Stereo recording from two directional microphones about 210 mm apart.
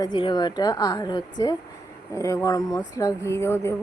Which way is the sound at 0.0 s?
20° left (ahead or behind).